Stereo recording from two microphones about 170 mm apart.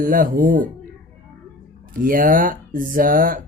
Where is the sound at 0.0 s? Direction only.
55° right (ahead or behind).